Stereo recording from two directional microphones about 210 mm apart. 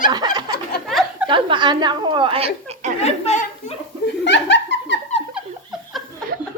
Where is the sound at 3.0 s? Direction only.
30° left (ahead or behind).